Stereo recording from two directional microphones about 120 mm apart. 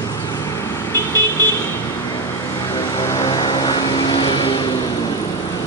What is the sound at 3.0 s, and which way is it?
Vehicle, 30° left (ahead or behind).